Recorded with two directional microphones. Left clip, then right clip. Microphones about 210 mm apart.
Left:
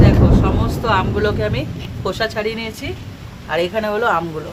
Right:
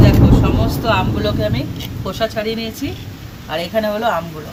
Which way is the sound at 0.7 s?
35° left (ahead or behind).